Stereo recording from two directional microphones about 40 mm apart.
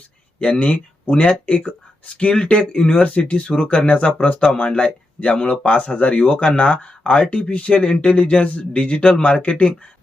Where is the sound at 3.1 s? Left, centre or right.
Left.